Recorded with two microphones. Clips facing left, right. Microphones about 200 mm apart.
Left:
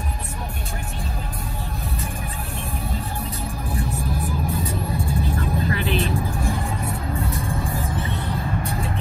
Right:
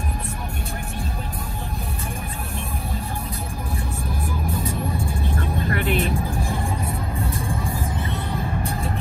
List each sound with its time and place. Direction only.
5.7 s vehicle: 50° right (ahead or behind)